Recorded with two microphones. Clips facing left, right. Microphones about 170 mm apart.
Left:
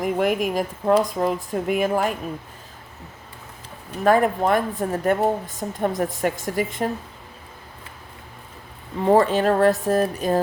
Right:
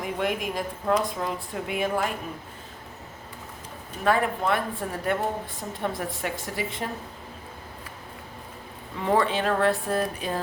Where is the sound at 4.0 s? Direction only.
45° left (ahead or behind).